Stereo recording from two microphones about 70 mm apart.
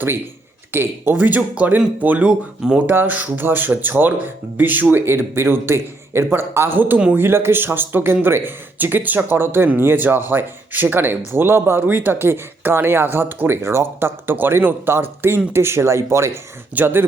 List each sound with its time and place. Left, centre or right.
0.7 s speech: right